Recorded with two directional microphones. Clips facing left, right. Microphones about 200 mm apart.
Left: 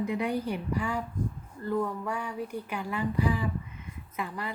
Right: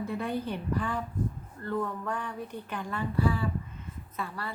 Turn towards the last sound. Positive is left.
turn(degrees=15)  # may be behind; listen again after turning